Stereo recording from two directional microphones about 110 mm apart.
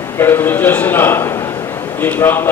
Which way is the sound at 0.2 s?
20° left (ahead or behind).